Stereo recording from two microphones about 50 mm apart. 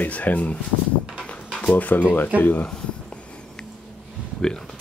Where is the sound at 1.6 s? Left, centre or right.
Left.